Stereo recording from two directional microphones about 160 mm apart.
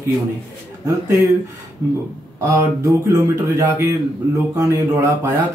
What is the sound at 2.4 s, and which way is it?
A man's voice, 20° right (ahead or behind).